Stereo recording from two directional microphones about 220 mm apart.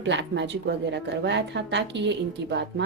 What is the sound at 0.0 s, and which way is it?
A woman's voice, 55° right (ahead or behind).